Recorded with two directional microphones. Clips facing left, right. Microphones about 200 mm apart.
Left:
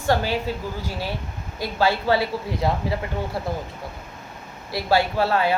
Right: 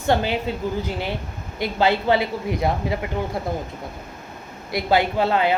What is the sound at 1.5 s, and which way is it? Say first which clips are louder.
A woman's voice: right 2 dB; 20° right (ahead or behind).